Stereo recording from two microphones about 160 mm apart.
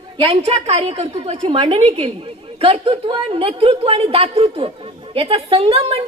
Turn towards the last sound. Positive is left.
turn(degrees=-35)  # may be behind; listen again after turning